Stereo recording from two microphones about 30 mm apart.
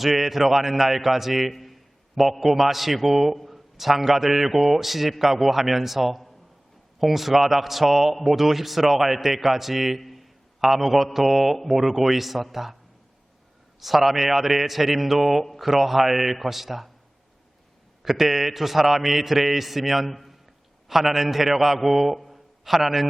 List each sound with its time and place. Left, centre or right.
0.0 s a man's voice: centre
1.5 s a sound: centre
2.4 s a man's voice: centre
13.7 s a man's voice: centre
18.0 s a man's voice: centre
20.1 s a man's voice: centre
20.8 s a man's voice: centre